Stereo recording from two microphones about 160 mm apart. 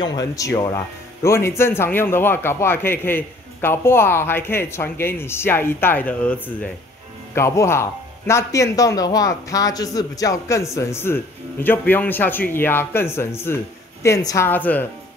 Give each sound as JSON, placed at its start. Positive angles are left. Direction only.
{"t": 0.0, "sound": "a man's voice", "side_deg": 25}